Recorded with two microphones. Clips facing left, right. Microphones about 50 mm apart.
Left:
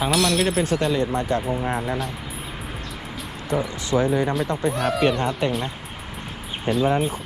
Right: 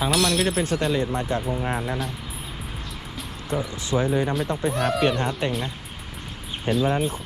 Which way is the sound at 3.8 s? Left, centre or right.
Left.